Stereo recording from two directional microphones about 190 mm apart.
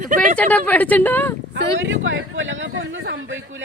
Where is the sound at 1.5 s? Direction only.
80° right.